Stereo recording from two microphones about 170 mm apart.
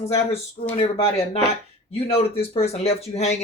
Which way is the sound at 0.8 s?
35° left (ahead or behind).